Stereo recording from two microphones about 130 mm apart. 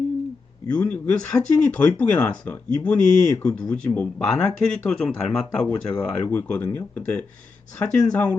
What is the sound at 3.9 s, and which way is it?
Speech, 5° left (ahead or behind).